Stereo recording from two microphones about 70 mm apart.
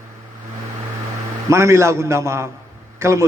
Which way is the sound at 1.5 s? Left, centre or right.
Right.